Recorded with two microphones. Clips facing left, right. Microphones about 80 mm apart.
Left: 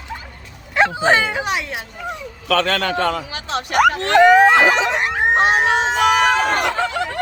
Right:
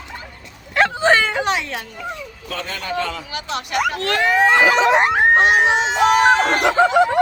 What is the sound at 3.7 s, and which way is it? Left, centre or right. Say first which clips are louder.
Speech: left 6 dB; left.